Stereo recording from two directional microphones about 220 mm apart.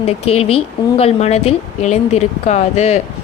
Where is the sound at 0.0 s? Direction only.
25° left (ahead or behind).